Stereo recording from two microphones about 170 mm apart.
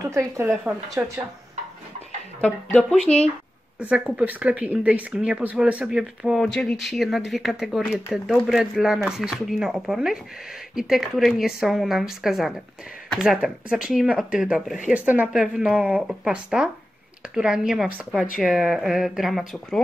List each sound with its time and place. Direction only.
0.1 s speech: 15° right (ahead or behind)
0.5 s speech: centre (ahead or behind)
2.4 s speech: 5° left (ahead or behind)
3.8 s speech: 10° right (ahead or behind)